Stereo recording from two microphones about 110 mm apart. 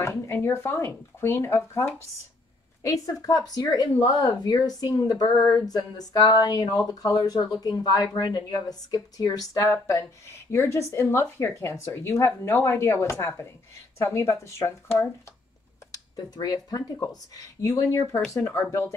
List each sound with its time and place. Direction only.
0.0 s speech: 20° left (ahead or behind)
15.9 s speech: 35° left (ahead or behind)